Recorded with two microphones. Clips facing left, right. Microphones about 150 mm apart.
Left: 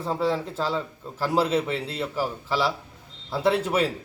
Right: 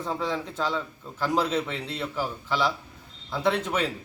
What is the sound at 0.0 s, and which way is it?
Speech, 35° left (ahead or behind).